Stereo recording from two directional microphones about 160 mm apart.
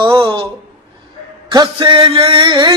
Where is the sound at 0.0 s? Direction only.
30° right (ahead or behind).